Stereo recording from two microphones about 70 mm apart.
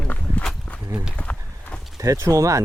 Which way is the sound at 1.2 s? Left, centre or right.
Centre.